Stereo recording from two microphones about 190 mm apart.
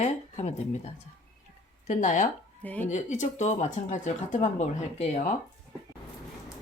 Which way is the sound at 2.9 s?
40° left (ahead or behind).